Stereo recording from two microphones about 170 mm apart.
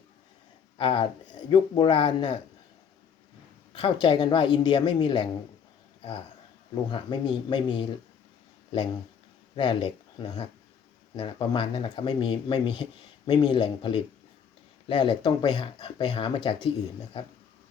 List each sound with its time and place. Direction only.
0.8 s speech: 30° left (ahead or behind)
3.7 s speech: 30° left (ahead or behind)
6.7 s speech: 30° left (ahead or behind)
9.6 s speech: 30° left (ahead or behind)